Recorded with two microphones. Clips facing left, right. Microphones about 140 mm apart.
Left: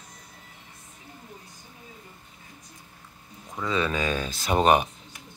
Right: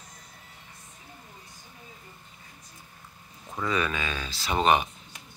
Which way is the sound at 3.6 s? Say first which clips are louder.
Left 1 dB; 25° left (ahead or behind).